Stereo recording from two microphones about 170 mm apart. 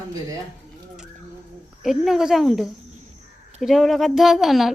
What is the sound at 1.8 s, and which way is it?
A woman's voice, centre (ahead or behind).